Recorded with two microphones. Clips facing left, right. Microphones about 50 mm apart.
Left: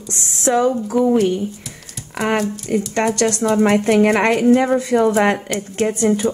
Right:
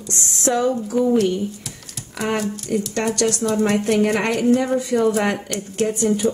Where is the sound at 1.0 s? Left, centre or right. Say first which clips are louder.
Left 2 dB; centre.